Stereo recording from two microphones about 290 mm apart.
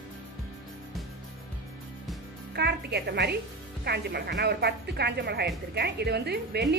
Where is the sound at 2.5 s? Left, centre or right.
Right.